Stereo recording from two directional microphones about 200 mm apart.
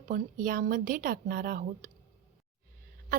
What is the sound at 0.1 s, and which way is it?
A woman's voice, 45° right (ahead or behind).